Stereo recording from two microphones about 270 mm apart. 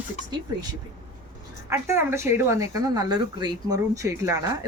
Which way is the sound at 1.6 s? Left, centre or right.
Centre.